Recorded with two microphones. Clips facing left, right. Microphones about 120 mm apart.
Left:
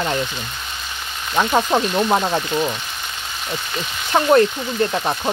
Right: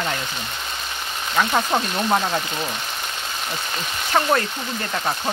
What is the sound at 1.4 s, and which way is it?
Speech, 20° left (ahead or behind).